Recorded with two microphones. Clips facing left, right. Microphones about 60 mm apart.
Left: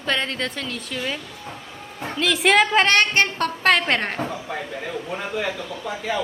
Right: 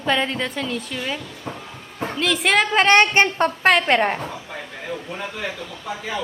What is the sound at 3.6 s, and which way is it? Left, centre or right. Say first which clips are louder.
Speech: right 2 dB; centre.